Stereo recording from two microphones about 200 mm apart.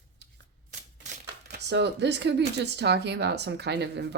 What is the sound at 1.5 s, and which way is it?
Speech, 60° right (ahead or behind).